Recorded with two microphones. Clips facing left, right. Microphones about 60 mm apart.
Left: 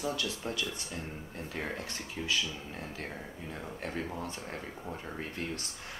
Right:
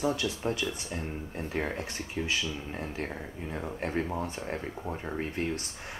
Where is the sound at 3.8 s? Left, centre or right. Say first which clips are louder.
Right 6 dB; right.